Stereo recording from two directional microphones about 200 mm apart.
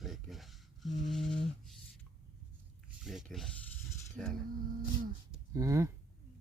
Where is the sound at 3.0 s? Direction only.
Centre (ahead or behind).